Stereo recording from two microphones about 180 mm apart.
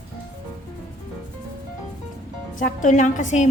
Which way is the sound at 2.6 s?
45° left (ahead or behind).